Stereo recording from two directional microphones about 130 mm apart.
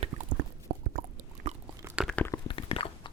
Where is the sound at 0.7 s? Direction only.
90° right.